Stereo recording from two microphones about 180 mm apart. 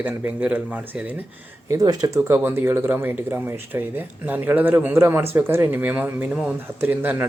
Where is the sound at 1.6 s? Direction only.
20° right (ahead or behind).